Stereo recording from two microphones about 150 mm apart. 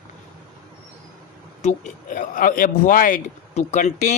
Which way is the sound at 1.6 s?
55° left (ahead or behind).